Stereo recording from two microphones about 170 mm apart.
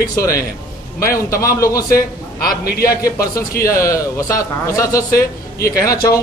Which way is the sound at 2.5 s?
65° left (ahead or behind).